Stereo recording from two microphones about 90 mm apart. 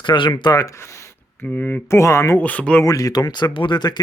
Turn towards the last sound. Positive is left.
turn(degrees=55)  # may be behind; listen again after turning